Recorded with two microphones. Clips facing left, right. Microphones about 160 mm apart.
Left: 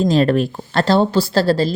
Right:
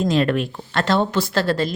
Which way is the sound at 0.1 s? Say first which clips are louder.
Left 4 dB; 35° left (ahead or behind).